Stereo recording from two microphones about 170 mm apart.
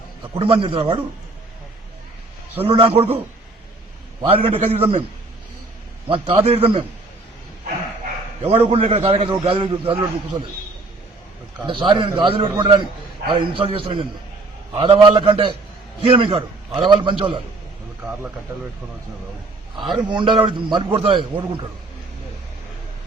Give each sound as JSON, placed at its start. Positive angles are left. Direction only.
{"t": 0.3, "sound": "a man's voice", "side_deg": -30}
{"t": 2.6, "sound": "a man's voice", "side_deg": -35}
{"t": 6.1, "sound": "a man's voice", "side_deg": -30}
{"t": 8.4, "sound": "a man's voice", "side_deg": -35}
{"t": 11.6, "sound": "a man's voice", "side_deg": -30}
{"t": 19.9, "sound": "a man's voice", "side_deg": -30}